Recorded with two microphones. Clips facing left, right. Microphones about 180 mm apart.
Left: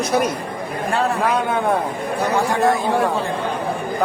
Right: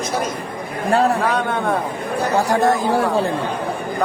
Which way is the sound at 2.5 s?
40° right (ahead or behind).